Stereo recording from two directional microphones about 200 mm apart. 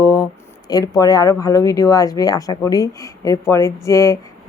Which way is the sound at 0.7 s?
20° left (ahead or behind).